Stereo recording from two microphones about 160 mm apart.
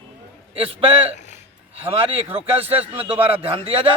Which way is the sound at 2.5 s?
35° right (ahead or behind).